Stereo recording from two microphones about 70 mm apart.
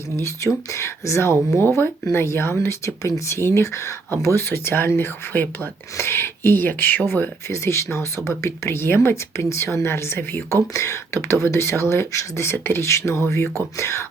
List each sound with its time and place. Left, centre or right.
0.2 s speech: left
4.4 s speech: left